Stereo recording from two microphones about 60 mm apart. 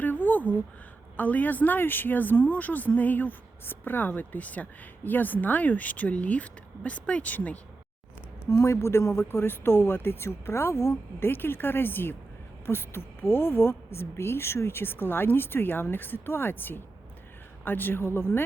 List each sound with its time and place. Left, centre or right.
0.0 s a sound: left
1.1 s speech: left
8.4 s speech: left
11.3 s a woman's voice: left